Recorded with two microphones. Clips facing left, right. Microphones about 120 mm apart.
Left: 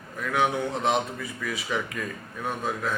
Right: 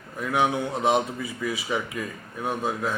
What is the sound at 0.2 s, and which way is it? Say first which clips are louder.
Speech: right 1 dB; 20° right (ahead or behind).